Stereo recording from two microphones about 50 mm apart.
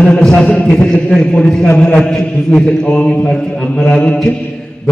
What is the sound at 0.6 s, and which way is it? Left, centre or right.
Speech, left.